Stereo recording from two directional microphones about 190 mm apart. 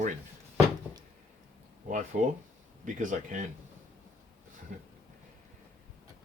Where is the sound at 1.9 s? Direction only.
40° right (ahead or behind).